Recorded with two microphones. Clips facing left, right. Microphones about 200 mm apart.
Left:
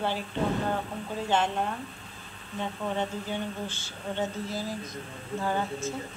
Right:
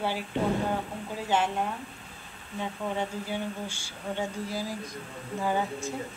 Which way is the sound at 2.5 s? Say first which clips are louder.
Left 1 dB; 10° right (ahead or behind).